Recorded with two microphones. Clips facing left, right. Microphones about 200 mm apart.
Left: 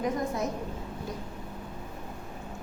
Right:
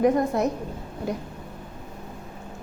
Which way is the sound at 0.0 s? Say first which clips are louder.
Right 9 dB; 65° right (ahead or behind).